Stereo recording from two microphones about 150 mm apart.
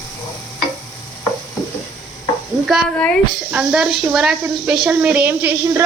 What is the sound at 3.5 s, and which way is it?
A woman's voice, 5° right (ahead or behind).